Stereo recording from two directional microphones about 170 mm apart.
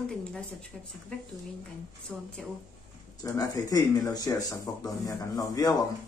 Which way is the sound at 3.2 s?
20° left (ahead or behind).